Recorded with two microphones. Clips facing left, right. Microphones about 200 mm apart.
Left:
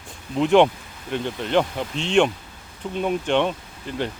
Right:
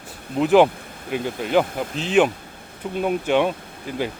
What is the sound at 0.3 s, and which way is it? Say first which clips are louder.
Speech: right 1 dB; 5° right (ahead or behind).